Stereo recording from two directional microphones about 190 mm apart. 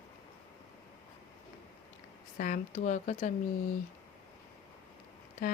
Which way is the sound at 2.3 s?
45° left (ahead or behind).